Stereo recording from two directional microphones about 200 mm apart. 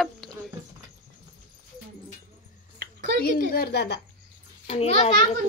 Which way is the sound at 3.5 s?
50° left (ahead or behind).